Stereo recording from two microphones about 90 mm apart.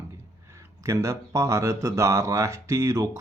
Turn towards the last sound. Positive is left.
turn(degrees=-40)  # may be behind; listen again after turning